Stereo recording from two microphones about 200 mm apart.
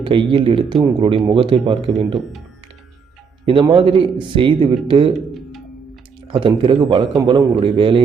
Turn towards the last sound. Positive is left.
turn(degrees=-25)  # may be behind; listen again after turning